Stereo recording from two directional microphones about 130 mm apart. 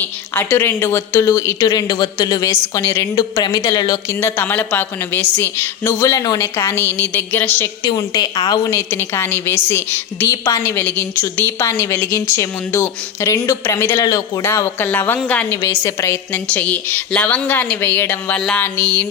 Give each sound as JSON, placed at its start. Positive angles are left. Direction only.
{"t": 0.0, "sound": "a woman's voice", "side_deg": 15}
{"t": 2.5, "sound": "a woman's voice", "side_deg": 20}
{"t": 4.2, "sound": "a woman's voice", "side_deg": 15}
{"t": 6.1, "sound": "a woman's voice", "side_deg": 30}
{"t": 7.9, "sound": "a woman's voice", "side_deg": 30}
{"t": 8.7, "sound": "a woman's voice", "side_deg": 20}
{"t": 14.4, "sound": "a woman's voice", "side_deg": 20}